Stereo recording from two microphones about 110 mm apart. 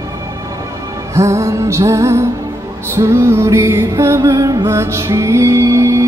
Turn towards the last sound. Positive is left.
turn(degrees=-30)  # may be behind; listen again after turning